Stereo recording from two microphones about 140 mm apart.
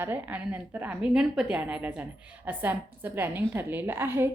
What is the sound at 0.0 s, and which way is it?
A woman's voice, 10° right (ahead or behind).